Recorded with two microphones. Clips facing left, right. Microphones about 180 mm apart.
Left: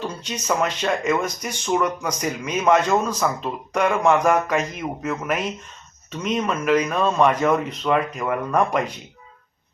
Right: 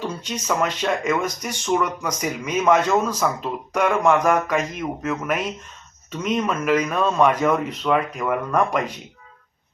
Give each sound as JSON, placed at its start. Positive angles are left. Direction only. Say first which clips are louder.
{"t": 0.3, "sound": "speech", "louder": "left 1 dB", "side_deg": 0}